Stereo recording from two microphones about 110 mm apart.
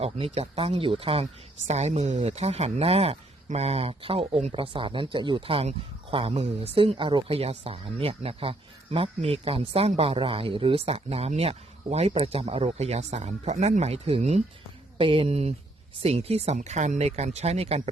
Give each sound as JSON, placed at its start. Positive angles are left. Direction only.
{"t": 0.0, "sound": "speech", "side_deg": -65}
{"t": 4.5, "sound": "speech", "side_deg": -50}
{"t": 5.6, "sound": "speech", "side_deg": -60}
{"t": 7.3, "sound": "speech", "side_deg": -65}
{"t": 14.9, "sound": "speech", "side_deg": -55}